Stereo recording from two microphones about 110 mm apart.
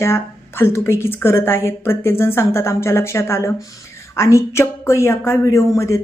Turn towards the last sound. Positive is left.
turn(degrees=25)  # may be behind; listen again after turning